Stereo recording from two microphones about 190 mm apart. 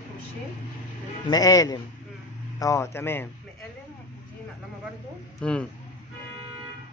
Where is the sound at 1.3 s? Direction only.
20° left (ahead or behind).